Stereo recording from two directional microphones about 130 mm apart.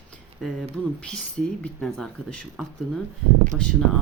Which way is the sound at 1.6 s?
5° left (ahead or behind).